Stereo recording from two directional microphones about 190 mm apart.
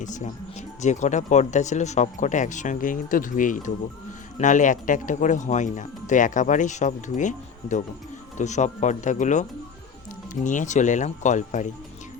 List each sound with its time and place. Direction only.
0.0 s speech: 40° left (ahead or behind)